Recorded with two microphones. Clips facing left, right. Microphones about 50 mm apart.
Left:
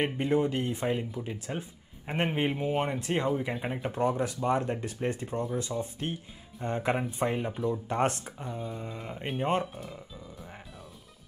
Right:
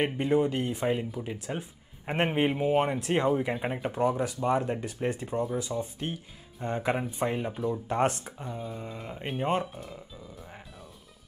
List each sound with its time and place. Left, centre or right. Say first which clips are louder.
0.0 s speech: right 1 dB; centre